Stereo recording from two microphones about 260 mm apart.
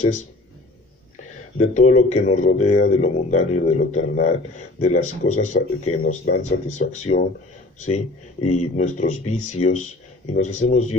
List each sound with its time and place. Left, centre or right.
1.6 s speech: left